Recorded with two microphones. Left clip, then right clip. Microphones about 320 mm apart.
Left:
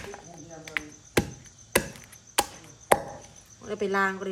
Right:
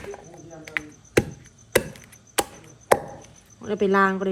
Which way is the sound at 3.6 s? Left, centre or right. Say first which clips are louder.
Right 6 dB; centre.